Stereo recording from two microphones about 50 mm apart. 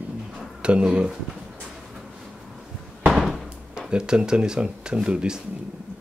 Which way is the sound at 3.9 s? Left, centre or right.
Centre.